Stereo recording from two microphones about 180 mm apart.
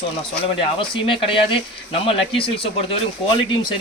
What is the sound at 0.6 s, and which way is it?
Speech, 30° left (ahead or behind).